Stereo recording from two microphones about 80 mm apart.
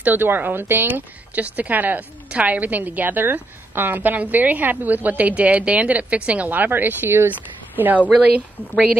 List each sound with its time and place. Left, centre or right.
0.0 s a woman's voice: right